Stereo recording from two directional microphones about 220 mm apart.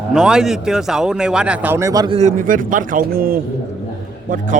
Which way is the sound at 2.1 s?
35° right (ahead or behind).